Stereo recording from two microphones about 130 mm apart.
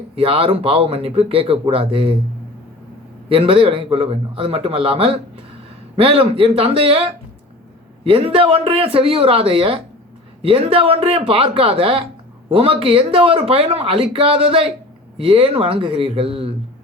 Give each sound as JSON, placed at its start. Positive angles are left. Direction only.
{"t": 0.2, "sound": "speech", "side_deg": -45}
{"t": 3.2, "sound": "speech", "side_deg": -45}